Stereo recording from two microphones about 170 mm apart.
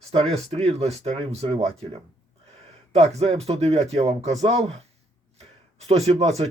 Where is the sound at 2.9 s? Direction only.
40° right (ahead or behind).